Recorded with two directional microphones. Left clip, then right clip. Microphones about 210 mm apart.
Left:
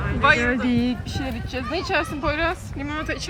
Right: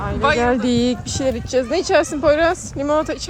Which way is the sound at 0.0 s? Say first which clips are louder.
Right 1 dB; 5° right (ahead or behind).